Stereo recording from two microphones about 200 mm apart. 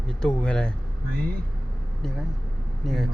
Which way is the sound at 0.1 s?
5° left (ahead or behind).